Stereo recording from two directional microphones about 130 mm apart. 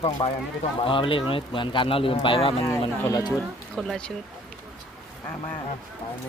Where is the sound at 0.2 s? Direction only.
40° left (ahead or behind).